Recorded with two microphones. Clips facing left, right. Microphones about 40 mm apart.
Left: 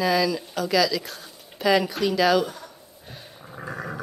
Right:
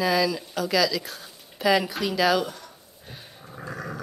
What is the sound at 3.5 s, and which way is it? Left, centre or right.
Dog, left.